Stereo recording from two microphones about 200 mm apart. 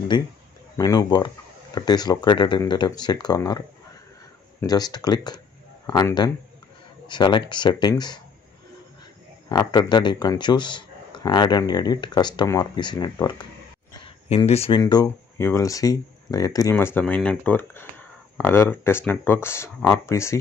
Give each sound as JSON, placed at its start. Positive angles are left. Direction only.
{"t": 0.1, "sound": "speech", "side_deg": 20}
{"t": 9.5, "sound": "speech", "side_deg": 20}
{"t": 14.8, "sound": "speech", "side_deg": 20}